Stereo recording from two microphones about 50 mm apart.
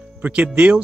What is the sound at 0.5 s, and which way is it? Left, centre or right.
Speech, right.